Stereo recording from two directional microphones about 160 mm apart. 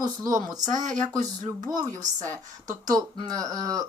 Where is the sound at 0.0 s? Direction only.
25° right (ahead or behind).